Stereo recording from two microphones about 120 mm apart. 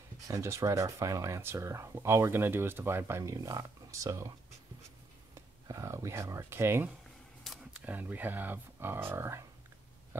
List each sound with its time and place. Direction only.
0.3 s speech: 25° right (ahead or behind)
5.3 s speech: 25° right (ahead or behind)